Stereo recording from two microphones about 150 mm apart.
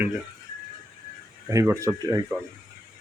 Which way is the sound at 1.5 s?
20° right (ahead or behind).